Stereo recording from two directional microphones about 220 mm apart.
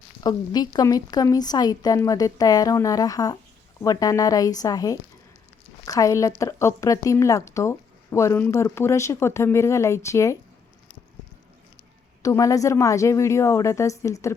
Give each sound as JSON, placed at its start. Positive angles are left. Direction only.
{"t": 0.2, "sound": "a woman's voice", "side_deg": 20}
{"t": 12.2, "sound": "a woman's voice", "side_deg": 15}